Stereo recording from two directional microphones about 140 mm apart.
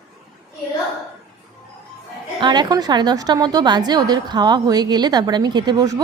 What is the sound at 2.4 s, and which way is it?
A woman's voice, 30° right (ahead or behind).